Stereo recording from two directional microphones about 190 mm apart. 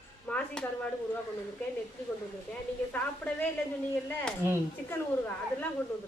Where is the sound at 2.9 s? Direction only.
10° left (ahead or behind).